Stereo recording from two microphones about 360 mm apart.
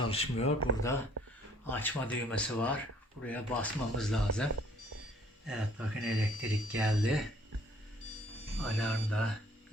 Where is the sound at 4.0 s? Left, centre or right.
Centre.